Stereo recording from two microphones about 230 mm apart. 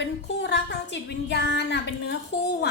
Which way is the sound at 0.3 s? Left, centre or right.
Left.